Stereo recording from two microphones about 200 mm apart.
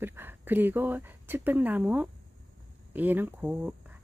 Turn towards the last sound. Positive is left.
turn(degrees=-5)  # may be behind; listen again after turning